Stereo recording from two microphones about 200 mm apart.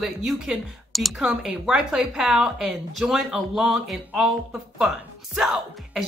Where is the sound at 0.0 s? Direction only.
Centre (ahead or behind).